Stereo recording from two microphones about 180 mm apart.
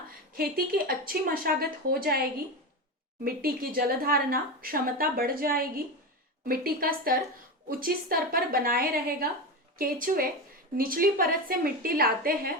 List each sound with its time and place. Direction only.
0.3 s speech: 55° right (ahead or behind)
3.2 s a woman's voice: 55° right (ahead or behind)